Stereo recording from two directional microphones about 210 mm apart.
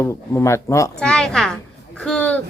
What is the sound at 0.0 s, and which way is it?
A woman's voice, 15° left (ahead or behind).